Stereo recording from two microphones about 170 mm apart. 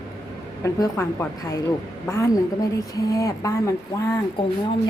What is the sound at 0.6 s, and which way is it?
A woman's voice, 15° left (ahead or behind).